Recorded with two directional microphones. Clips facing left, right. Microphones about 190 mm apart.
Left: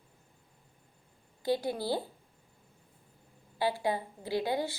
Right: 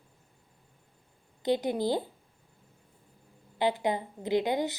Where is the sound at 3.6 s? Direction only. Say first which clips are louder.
Right 3 dB; 20° right (ahead or behind).